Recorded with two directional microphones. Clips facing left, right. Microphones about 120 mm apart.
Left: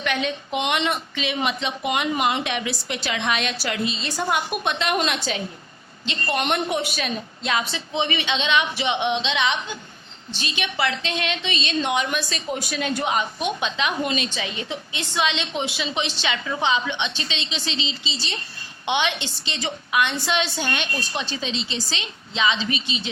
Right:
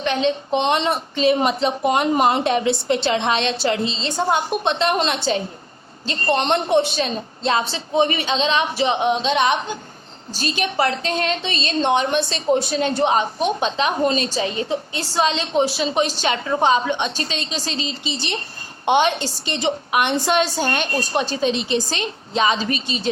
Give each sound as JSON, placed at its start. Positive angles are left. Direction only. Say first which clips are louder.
{"t": 0.0, "sound": "a woman's voice", "louder": "right 5 dB", "side_deg": -30}
{"t": 7.9, "sound": "a woman's voice", "louder": "right 6 dB", "side_deg": -40}
{"t": 18.9, "sound": "a woman's voice", "louder": "right 7 dB", "side_deg": -45}